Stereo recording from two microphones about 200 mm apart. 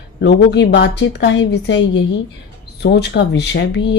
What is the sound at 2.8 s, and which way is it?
A woman's voice, 55° left (ahead or behind).